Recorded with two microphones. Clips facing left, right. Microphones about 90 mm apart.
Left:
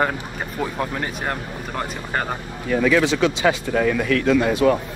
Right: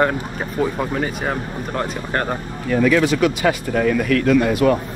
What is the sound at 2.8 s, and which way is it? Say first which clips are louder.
Speech: right 1 dB; 25° left (ahead or behind).